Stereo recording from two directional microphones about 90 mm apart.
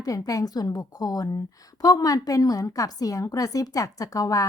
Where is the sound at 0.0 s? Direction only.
40° left (ahead or behind).